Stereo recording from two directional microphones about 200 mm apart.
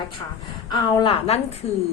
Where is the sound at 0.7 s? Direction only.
20° left (ahead or behind).